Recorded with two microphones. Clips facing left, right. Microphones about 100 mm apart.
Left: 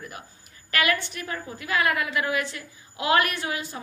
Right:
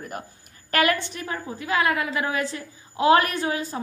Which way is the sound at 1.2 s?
25° right (ahead or behind).